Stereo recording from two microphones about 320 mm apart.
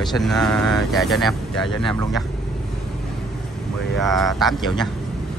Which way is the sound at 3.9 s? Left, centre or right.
Centre.